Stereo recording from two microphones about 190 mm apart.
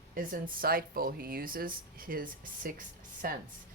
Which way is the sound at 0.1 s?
45° right (ahead or behind).